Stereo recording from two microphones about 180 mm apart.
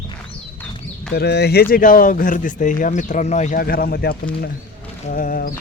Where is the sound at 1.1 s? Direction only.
65° left (ahead or behind).